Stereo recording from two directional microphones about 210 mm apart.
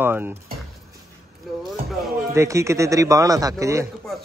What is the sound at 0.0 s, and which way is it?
Speech, 10° right (ahead or behind).